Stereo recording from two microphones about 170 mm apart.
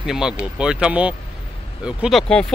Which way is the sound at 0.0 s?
5° right (ahead or behind).